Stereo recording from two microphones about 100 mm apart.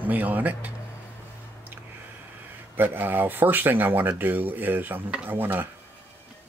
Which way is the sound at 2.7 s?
20° right (ahead or behind).